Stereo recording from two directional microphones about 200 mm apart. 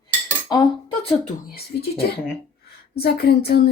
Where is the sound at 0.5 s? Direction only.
20° left (ahead or behind).